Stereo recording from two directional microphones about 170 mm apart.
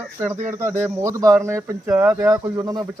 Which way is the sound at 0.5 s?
15° right (ahead or behind).